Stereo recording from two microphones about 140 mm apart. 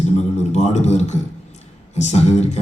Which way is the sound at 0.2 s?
55° left (ahead or behind).